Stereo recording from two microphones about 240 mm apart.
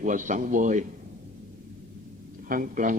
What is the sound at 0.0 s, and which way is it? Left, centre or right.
Speech, right.